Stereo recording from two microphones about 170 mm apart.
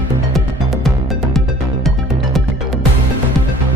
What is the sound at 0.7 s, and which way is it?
Music, centre (ahead or behind).